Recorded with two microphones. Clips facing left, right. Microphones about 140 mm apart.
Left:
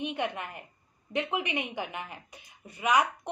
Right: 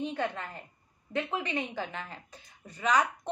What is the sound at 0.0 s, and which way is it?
A woman's voice, 15° left (ahead or behind).